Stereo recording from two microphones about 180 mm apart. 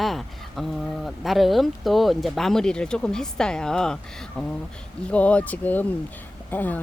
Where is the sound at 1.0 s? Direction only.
Centre (ahead or behind).